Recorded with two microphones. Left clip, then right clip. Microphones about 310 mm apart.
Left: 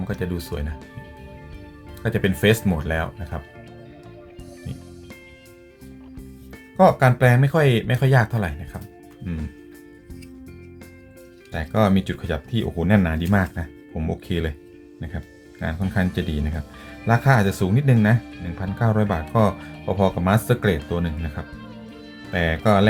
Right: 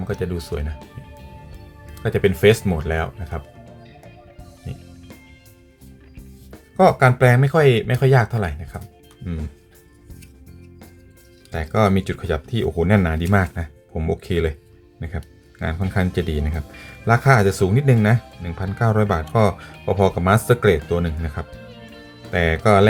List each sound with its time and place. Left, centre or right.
0.1 s speech: centre
2.0 s speech: centre
6.5 s speech: centre
11.5 s speech: centre